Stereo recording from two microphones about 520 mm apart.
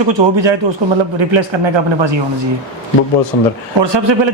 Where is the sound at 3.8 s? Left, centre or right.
Right.